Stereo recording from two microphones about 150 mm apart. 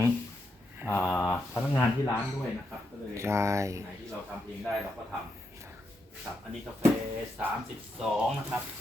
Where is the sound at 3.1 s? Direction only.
20° right (ahead or behind).